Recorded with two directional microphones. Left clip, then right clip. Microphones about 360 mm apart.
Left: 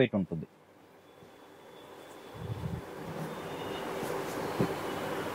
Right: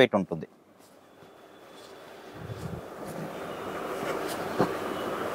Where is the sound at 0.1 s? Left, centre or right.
Centre.